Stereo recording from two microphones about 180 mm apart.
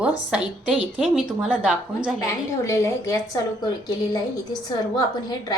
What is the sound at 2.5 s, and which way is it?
A woman's voice, 15° left (ahead or behind).